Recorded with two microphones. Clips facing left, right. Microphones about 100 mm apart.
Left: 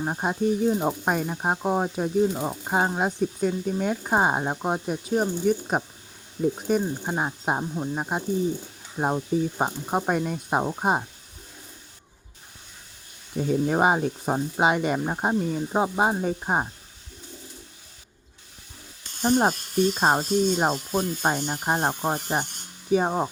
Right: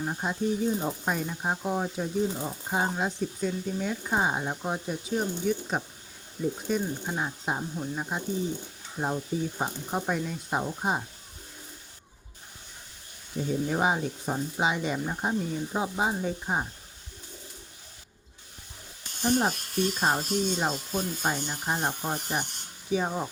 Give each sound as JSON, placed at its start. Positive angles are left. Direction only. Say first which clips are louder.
{"t": 0.0, "sound": "speech", "louder": "left 4 dB", "side_deg": 45}
{"t": 13.3, "sound": "speech", "louder": "left 5 dB", "side_deg": 50}
{"t": 19.2, "sound": "speech", "louder": "left 4 dB", "side_deg": 45}